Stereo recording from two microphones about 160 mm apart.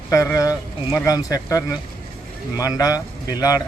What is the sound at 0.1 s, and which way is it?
A man's voice, 20° left (ahead or behind).